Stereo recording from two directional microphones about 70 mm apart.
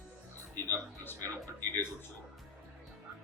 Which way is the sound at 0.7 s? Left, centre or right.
Left.